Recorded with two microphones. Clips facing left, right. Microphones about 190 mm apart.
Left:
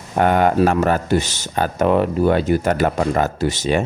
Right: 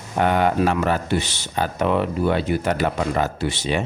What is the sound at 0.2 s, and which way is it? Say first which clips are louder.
Speech: left 4 dB; 45° left (ahead or behind).